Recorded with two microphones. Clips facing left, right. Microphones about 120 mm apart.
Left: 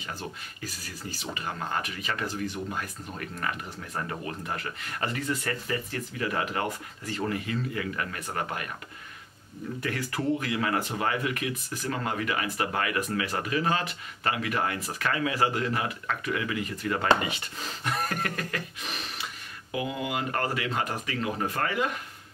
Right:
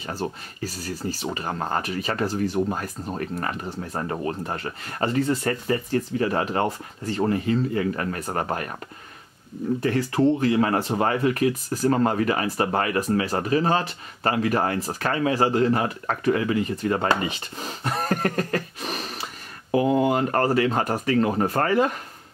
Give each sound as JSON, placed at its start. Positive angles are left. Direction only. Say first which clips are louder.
{"t": 0.0, "sound": "speech", "louder": "right 8 dB", "side_deg": -35}
{"t": 9.8, "sound": "speech", "louder": "right 9 dB", "side_deg": -30}